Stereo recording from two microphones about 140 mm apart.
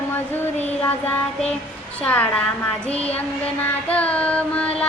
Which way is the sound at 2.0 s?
10° left (ahead or behind).